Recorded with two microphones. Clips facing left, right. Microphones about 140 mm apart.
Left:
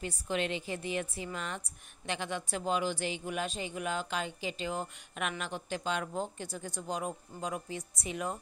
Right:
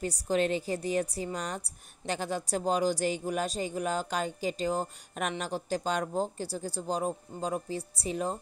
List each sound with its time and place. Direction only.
0.0 s a woman's voice: 40° right (ahead or behind)